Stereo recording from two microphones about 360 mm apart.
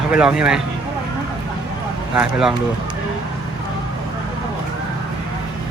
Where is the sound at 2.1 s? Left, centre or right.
Centre.